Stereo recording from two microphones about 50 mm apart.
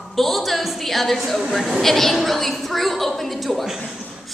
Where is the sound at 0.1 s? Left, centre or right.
Centre.